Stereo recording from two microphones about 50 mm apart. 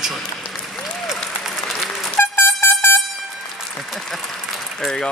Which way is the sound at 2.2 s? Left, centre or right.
Left.